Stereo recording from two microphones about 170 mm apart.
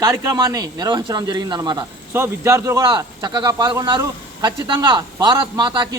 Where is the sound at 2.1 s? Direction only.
15° right (ahead or behind).